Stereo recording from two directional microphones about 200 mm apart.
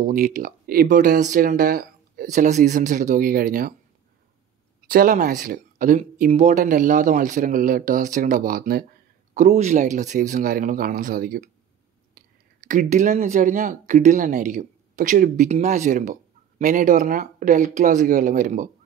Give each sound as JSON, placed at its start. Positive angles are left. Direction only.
{"t": 0.0, "sound": "speech", "side_deg": -40}
{"t": 4.8, "sound": "speech", "side_deg": -45}
{"t": 9.3, "sound": "a man's voice", "side_deg": -35}